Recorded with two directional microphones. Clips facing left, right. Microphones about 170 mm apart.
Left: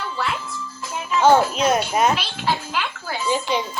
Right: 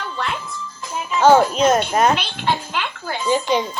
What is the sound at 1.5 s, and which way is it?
Speech, 5° left (ahead or behind).